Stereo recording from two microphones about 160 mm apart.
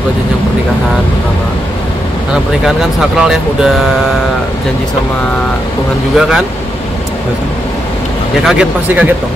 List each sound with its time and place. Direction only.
2.6 s speech: 5° right (ahead or behind)
6.1 s speech: 5° right (ahead or behind)
8.5 s speech: 5° right (ahead or behind)